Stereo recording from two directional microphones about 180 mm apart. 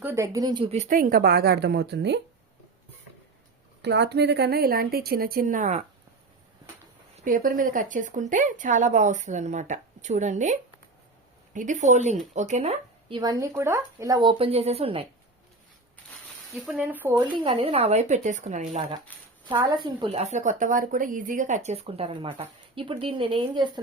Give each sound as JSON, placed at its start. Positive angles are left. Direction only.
{"t": 0.0, "sound": "speech", "side_deg": -15}
{"t": 0.9, "sound": "a woman's voice", "side_deg": -50}
{"t": 3.8, "sound": "a woman's voice", "side_deg": -70}
{"t": 7.3, "sound": "speech", "side_deg": -50}
{"t": 13.6, "sound": "speech", "side_deg": -15}
{"t": 16.5, "sound": "speech", "side_deg": 0}
{"t": 17.3, "sound": "speech", "side_deg": -30}
{"t": 19.6, "sound": "speech", "side_deg": -25}